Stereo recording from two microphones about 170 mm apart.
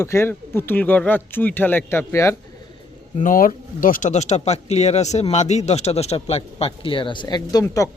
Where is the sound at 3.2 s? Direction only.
55° left (ahead or behind).